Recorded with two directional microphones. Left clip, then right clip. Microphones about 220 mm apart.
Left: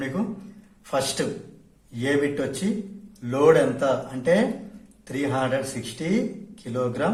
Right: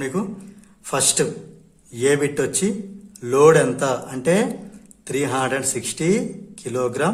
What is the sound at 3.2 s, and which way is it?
Speech, 45° right (ahead or behind).